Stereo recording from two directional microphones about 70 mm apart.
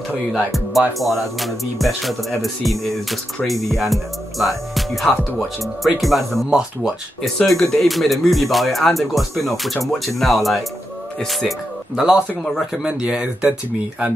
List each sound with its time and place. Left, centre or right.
0.3 s speech: centre
13.0 s speech: centre